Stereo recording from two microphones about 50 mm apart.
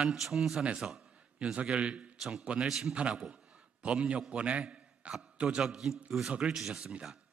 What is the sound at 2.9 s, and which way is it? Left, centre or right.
A man's voice, centre.